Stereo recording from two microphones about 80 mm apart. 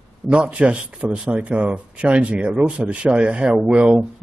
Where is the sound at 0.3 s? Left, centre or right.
Centre.